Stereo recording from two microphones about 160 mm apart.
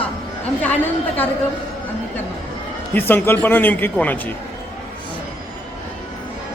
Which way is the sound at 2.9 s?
10° left (ahead or behind).